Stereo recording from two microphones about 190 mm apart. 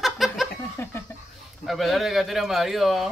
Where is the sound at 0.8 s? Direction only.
15° left (ahead or behind).